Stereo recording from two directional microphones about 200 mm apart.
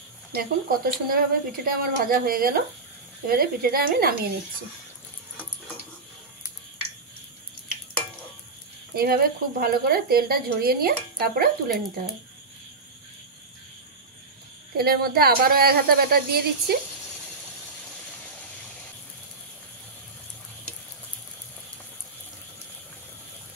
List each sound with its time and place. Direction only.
0.3 s speech: 45° right (ahead or behind)
8.9 s speech: 50° right (ahead or behind)
14.8 s speech: 50° right (ahead or behind)